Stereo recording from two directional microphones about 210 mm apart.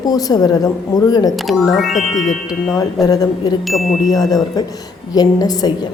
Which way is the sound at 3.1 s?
15° left (ahead or behind).